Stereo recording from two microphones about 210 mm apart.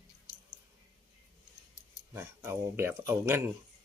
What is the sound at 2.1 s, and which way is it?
Speech, 10° right (ahead or behind).